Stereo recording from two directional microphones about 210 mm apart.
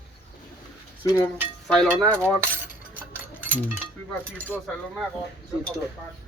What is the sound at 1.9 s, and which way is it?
Cutlery, 10° right (ahead or behind).